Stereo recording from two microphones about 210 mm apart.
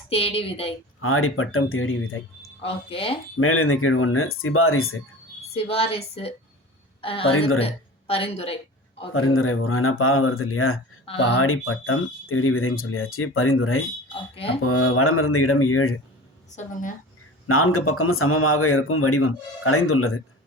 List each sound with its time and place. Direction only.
0.1 s a woman's voice: 25° left (ahead or behind)
1.0 s speech: 80° left
2.6 s a woman's voice: 25° left (ahead or behind)
3.3 s speech: 85° left
5.5 s a woman's voice: 25° left (ahead or behind)
7.0 s a woman's voice: 25° left (ahead or behind)
9.1 s speech: 80° left
14.6 s speech: 90° left
17.4 s speech: 90° left